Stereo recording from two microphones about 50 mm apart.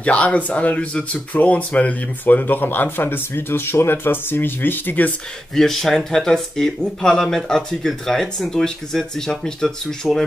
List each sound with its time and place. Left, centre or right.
0.0 s speech: left
5.5 s speech: centre